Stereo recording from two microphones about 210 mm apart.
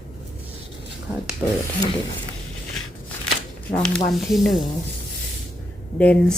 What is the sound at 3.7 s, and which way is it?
Speech, 5° left (ahead or behind).